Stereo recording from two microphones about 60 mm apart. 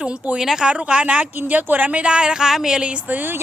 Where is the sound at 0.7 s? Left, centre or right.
Centre.